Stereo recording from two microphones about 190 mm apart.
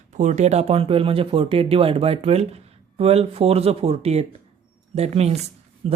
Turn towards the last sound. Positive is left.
turn(degrees=-35)  # may be behind; listen again after turning